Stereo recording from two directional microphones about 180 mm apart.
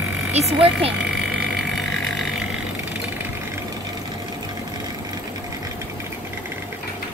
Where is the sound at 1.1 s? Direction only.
Centre (ahead or behind).